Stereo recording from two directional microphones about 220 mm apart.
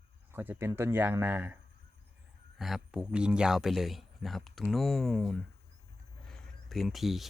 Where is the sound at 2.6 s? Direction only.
Centre (ahead or behind).